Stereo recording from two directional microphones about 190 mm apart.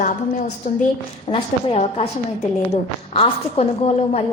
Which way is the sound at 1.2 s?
30° left (ahead or behind).